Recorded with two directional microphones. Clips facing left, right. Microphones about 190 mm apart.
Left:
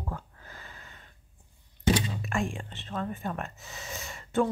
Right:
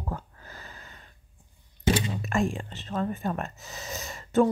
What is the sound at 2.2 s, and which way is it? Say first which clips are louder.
Speech: right 4 dB; 40° right (ahead or behind).